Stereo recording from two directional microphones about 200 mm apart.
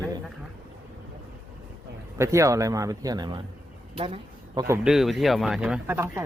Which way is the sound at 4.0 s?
25° right (ahead or behind).